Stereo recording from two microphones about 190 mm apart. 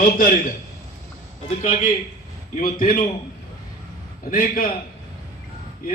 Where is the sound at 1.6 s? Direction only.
45° left (ahead or behind).